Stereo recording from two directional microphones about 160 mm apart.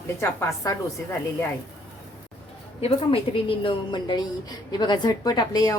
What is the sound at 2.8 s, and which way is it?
A woman's voice, 35° left (ahead or behind).